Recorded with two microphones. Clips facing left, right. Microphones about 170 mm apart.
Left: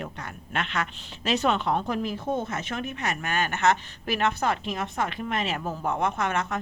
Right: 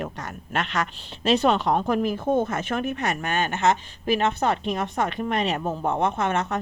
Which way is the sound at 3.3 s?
25° right (ahead or behind).